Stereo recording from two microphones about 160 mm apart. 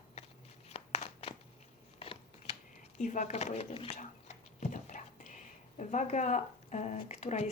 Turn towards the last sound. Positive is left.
turn(degrees=45)  # may be behind; listen again after turning